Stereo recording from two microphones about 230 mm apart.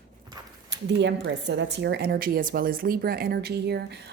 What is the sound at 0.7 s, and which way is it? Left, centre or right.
Speech, right.